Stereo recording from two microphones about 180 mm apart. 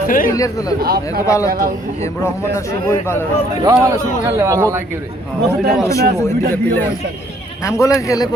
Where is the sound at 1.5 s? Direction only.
55° right (ahead or behind).